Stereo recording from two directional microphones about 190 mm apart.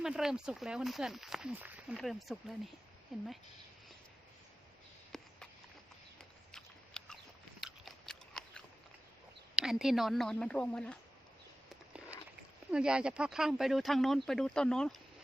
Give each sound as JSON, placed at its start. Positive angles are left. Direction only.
{"t": 0.0, "sound": "speech", "side_deg": -5}
{"t": 5.1, "sound": "a sound", "side_deg": 0}
{"t": 6.5, "sound": "biting", "side_deg": 5}
{"t": 9.6, "sound": "speech", "side_deg": 0}
{"t": 12.7, "sound": "speech", "side_deg": -5}